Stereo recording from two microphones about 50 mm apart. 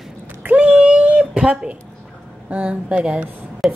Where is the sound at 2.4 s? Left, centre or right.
Right.